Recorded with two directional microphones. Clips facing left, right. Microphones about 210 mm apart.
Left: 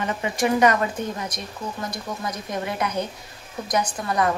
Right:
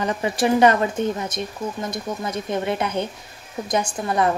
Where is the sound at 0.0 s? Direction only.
35° right (ahead or behind).